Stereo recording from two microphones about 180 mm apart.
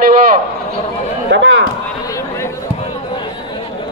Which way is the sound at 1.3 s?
90° right.